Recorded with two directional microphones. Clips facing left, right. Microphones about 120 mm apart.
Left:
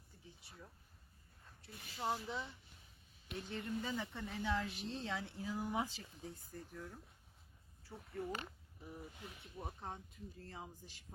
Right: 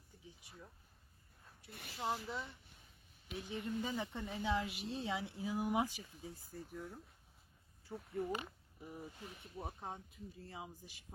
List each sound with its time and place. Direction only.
1.7 s speech: 65° right (ahead or behind)
2.0 s speech: centre (ahead or behind)
3.4 s speech: 15° right (ahead or behind)
8.2 s speech: 10° right (ahead or behind)